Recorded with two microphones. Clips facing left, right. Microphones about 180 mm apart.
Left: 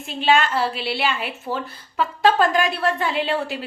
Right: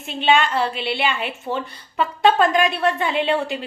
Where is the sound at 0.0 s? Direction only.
Centre (ahead or behind).